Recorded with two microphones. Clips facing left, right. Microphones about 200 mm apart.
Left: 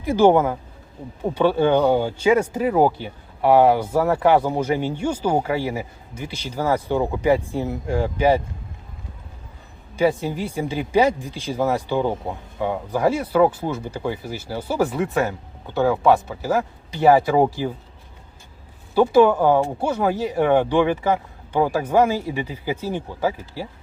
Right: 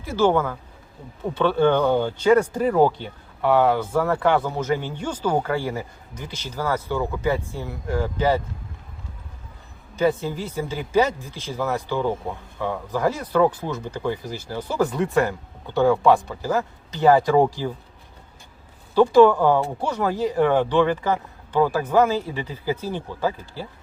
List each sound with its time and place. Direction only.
0.0 s speech: 15° left (ahead or behind)
9.9 s speech: 15° left (ahead or behind)
15.1 s speech: 20° left (ahead or behind)
15.7 s speech: 5° left (ahead or behind)
18.9 s speech: 10° left (ahead or behind)